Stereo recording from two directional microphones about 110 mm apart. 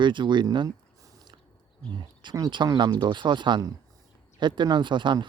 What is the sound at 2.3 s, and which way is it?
Speech, 40° right (ahead or behind).